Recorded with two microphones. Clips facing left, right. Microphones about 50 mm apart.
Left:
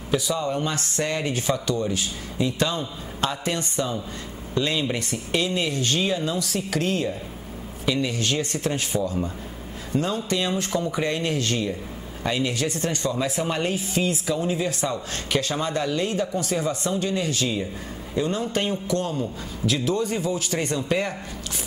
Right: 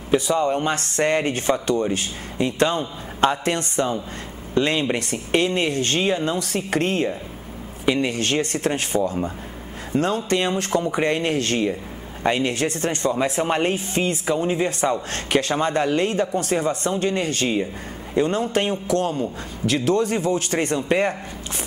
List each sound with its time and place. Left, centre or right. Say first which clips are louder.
0.3 s a man's voice: right 5 dB; right
20.6 s speech: right 4 dB; right